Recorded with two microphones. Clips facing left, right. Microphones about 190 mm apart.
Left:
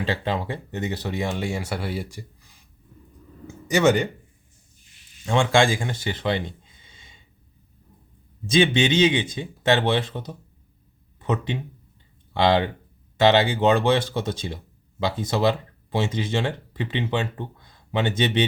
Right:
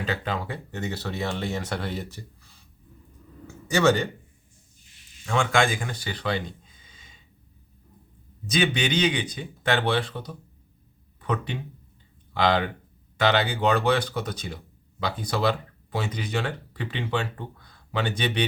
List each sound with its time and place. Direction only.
0.0 s speech: 25° left (ahead or behind)
5.2 s speech: 30° left (ahead or behind)
8.4 s speech: 25° left (ahead or behind)